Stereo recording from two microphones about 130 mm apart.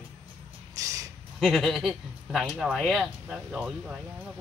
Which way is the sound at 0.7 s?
25° right (ahead or behind).